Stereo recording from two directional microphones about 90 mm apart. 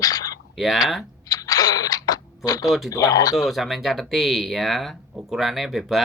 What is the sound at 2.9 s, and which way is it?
Speech, 40° left (ahead or behind).